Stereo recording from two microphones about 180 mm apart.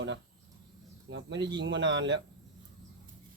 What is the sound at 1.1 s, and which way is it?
A man's voice, 80° right.